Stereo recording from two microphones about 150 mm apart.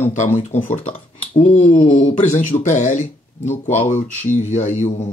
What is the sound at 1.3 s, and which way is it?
Speech, 45° left (ahead or behind).